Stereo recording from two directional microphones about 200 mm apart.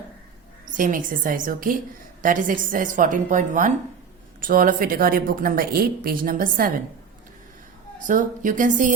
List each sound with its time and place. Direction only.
0.6 s a woman's voice: 40° right (ahead or behind)
8.0 s a woman's voice: 40° right (ahead or behind)